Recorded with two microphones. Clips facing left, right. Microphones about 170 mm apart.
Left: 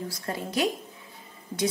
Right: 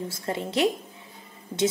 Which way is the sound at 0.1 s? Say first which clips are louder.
Right 3 dB; 25° right (ahead or behind).